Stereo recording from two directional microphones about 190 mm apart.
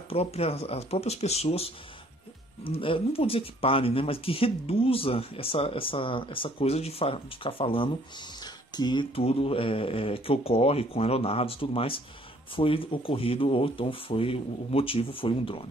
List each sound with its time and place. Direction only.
0.1 s speech: 30° left (ahead or behind)